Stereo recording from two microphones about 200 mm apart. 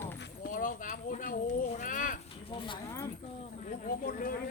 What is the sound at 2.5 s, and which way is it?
Speech, 25° left (ahead or behind).